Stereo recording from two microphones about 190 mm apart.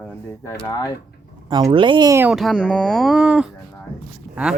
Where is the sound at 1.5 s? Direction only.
25° right (ahead or behind).